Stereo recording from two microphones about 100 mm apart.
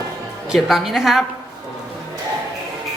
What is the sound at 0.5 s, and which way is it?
Speech, 5° right (ahead or behind).